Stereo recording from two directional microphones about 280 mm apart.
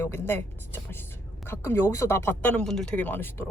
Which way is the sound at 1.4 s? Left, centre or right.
Centre.